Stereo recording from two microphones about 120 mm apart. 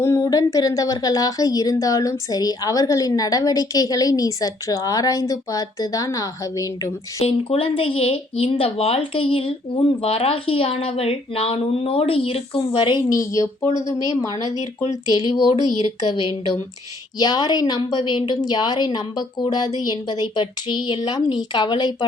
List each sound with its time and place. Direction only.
0.0 s a woman's voice: 25° left (ahead or behind)
7.2 s a woman's voice: 50° left (ahead or behind); by 15.4 s 30° left (ahead or behind)
17.2 s a woman's voice: 35° left (ahead or behind)